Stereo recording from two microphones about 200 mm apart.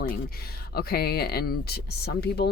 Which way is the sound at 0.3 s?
50° left (ahead or behind).